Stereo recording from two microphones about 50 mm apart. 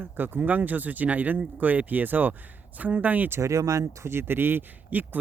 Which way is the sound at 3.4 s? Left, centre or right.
Right.